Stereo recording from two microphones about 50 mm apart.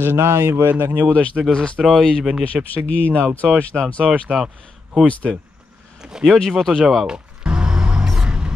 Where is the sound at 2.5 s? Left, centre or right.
Right.